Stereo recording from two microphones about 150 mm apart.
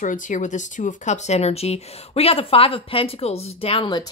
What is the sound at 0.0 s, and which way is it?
Speech, 60° left (ahead or behind).